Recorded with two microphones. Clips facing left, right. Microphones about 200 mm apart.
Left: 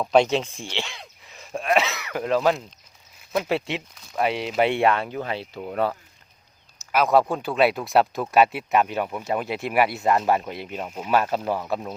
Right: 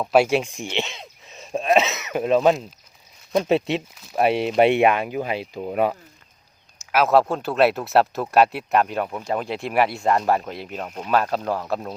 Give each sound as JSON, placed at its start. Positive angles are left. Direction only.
{"t": 0.0, "sound": "speech", "side_deg": -5}
{"t": 4.3, "sound": "speech", "side_deg": -55}
{"t": 4.5, "sound": "speech", "side_deg": -20}
{"t": 6.9, "sound": "speech", "side_deg": 0}